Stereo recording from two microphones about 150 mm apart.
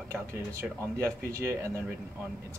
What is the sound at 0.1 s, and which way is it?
Speech, 20° right (ahead or behind).